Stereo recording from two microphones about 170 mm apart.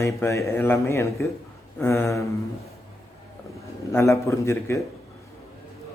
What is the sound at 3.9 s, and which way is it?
Speech, 15° left (ahead or behind).